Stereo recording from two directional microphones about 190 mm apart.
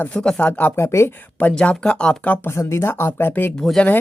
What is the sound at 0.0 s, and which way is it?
Speech, 5° left (ahead or behind).